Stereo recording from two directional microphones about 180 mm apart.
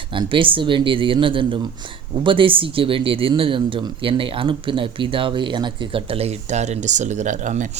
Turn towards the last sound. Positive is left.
turn(degrees=-45)  # may be behind; listen again after turning